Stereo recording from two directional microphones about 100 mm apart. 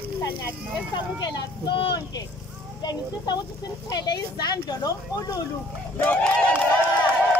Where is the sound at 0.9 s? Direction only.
55° left (ahead or behind).